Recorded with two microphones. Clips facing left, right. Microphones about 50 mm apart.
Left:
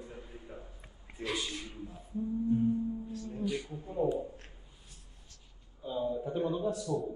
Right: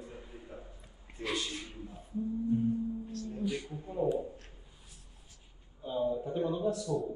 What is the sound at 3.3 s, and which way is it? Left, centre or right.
Speech, centre.